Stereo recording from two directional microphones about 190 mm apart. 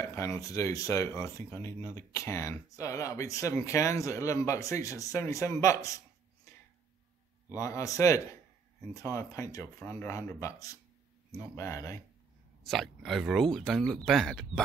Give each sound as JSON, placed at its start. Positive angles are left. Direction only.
{"t": 0.0, "sound": "speech", "side_deg": 15}
{"t": 7.5, "sound": "speech", "side_deg": 15}
{"t": 12.6, "sound": "speech", "side_deg": 0}